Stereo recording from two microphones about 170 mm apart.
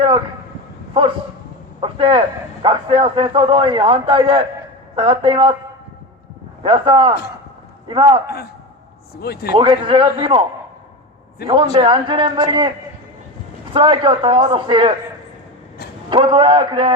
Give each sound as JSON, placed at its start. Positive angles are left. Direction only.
{"t": 1.8, "sound": "a man's voice", "side_deg": -30}
{"t": 6.6, "sound": "a man's voice", "side_deg": -30}
{"t": 9.2, "sound": "speech", "side_deg": 70}
{"t": 9.6, "sound": "a man's voice", "side_deg": -30}
{"t": 11.4, "sound": "a man's voice", "side_deg": -30}
{"t": 13.7, "sound": "a man's voice", "side_deg": -30}
{"t": 16.0, "sound": "a man's voice", "side_deg": -30}